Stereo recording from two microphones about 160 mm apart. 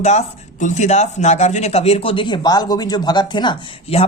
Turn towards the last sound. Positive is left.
turn(degrees=35)  # may be behind; listen again after turning